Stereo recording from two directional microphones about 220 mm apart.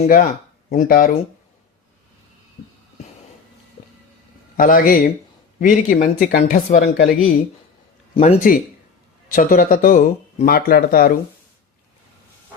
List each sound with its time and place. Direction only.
0.0 s speech: 40° left (ahead or behind)
4.5 s speech: 40° left (ahead or behind)
8.1 s speech: 30° left (ahead or behind)